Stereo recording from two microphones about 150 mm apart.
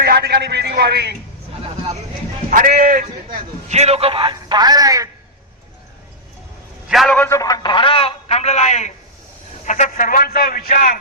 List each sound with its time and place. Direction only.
0.0 s a sound: 90° right
2.5 s a man's voice: 70° right (ahead or behind)
3.7 s a man's voice: 45° right (ahead or behind); by 5.0 s 25° right (ahead or behind)
6.8 s a man's voice: centre (ahead or behind)
7.2 s a man's voice: 20° left (ahead or behind); by 10.9 s 70° left (ahead or behind)